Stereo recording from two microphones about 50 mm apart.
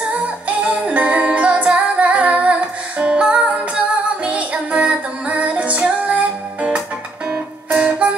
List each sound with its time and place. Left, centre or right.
0.7 s music: right